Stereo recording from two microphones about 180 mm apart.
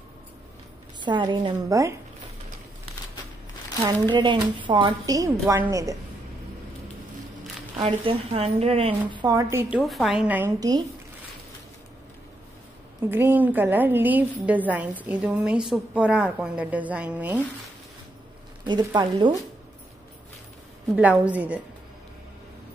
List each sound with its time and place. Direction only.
1.0 s a woman's voice: 25° right (ahead or behind)
4.1 s a woman's voice: 25° right (ahead or behind)
7.8 s speech: 30° right (ahead or behind)
9.1 s a woman's voice: 20° right (ahead or behind)
9.8 s a woman's voice: centre (ahead or behind)
13.0 s a woman's voice: 10° right (ahead or behind)
18.6 s a woman's voice: 25° right (ahead or behind)
20.9 s a woman's voice: 5° right (ahead or behind)